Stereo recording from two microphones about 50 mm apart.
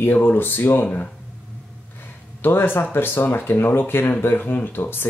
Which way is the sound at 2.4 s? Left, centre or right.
Left.